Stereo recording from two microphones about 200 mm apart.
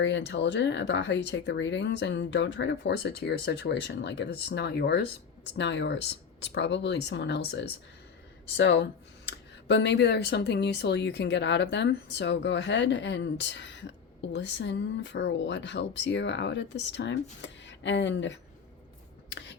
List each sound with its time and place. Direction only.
0.0 s speech: 60° left (ahead or behind)